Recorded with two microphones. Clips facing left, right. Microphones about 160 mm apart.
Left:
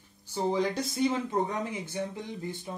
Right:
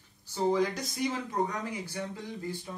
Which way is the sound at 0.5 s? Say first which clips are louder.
Left 1 dB; 25° left (ahead or behind).